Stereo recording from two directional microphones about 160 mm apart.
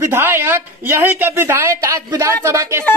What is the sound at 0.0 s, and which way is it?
A man's voice, 15° right (ahead or behind).